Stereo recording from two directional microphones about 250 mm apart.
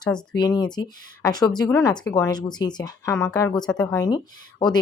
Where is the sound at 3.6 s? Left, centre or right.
Centre.